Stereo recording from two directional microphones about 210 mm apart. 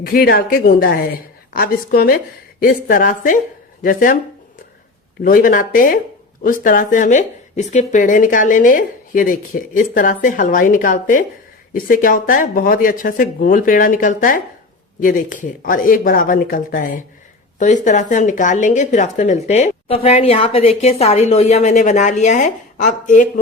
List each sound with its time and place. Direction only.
0.0 s a woman's voice: 45° left (ahead or behind)
5.2 s a woman's voice: 40° left (ahead or behind)